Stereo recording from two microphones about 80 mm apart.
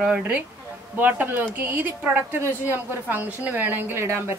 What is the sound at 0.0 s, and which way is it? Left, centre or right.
Speech, centre.